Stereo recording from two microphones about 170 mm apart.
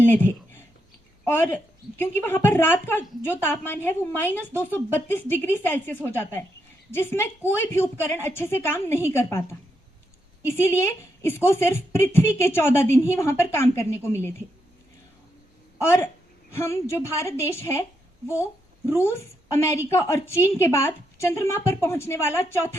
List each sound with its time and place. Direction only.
0.0 s a sound: 10° left (ahead or behind)
1.2 s a woman's voice: 10° left (ahead or behind)
15.8 s a woman's voice: 15° left (ahead or behind)
18.9 s a woman's voice: 15° left (ahead or behind)